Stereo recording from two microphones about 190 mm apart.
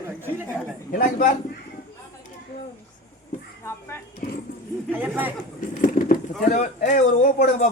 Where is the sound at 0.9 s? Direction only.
45° left (ahead or behind).